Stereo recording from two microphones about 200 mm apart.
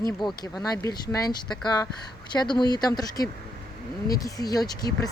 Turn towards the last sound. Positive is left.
turn(degrees=20)  # may be behind; listen again after turning